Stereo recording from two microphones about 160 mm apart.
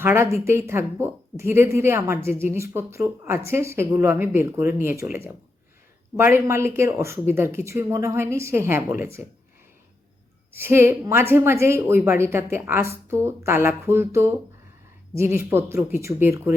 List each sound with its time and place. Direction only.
0.0 s speech: 15° right (ahead or behind)
6.1 s speech: 15° right (ahead or behind)
10.5 s speech: 15° right (ahead or behind)